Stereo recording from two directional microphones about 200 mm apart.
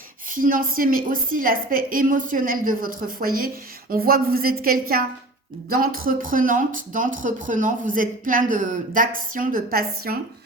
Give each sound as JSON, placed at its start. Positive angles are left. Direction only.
{"t": 0.3, "sound": "a woman's voice", "side_deg": -45}